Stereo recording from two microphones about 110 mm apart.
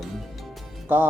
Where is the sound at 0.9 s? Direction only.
20° right (ahead or behind).